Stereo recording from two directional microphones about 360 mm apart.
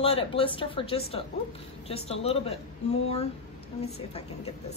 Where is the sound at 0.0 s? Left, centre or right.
Centre.